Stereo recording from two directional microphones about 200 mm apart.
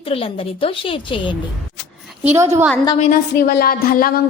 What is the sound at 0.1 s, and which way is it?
A woman's voice, 25° left (ahead or behind).